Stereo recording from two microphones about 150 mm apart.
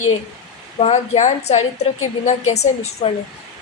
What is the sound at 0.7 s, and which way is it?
Speech, 45° left (ahead or behind).